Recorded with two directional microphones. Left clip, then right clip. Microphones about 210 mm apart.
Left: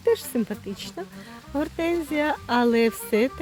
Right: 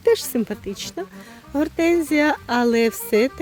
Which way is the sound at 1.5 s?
30° right (ahead or behind).